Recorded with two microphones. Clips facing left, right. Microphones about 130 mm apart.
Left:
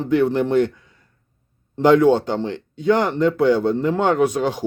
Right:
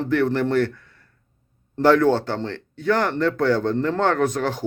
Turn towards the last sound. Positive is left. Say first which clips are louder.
# left 3 dB
turn(degrees=15)  # may be behind; listen again after turning